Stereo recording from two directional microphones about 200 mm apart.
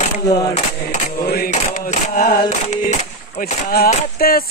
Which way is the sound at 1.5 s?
40° left (ahead or behind).